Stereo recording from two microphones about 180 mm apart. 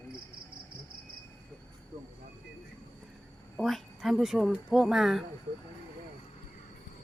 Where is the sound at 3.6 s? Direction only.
Centre (ahead or behind).